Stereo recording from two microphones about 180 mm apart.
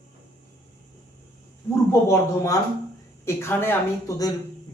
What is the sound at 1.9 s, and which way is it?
A man's voice, 15° left (ahead or behind).